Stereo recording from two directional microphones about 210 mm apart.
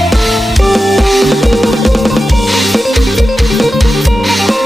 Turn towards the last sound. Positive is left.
turn(degrees=0)  # may be behind; listen again after turning